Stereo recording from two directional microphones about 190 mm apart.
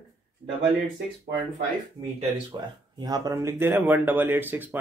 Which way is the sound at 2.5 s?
20° right (ahead or behind).